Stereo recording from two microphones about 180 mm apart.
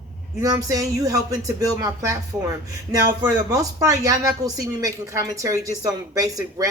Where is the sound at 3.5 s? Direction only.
20° right (ahead or behind).